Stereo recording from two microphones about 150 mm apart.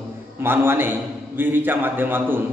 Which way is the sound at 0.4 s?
15° right (ahead or behind).